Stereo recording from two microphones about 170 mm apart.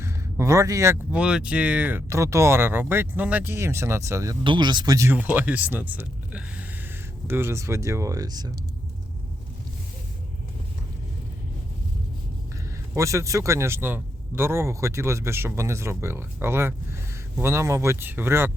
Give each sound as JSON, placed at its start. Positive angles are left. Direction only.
{"t": 0.0, "sound": "speech", "side_deg": -15}
{"t": 12.9, "sound": "speech", "side_deg": -15}